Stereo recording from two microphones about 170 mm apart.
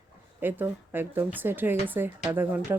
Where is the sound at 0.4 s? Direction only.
10° right (ahead or behind).